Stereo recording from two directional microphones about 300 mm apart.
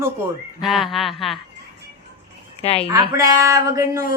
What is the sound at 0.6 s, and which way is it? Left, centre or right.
Speech, centre.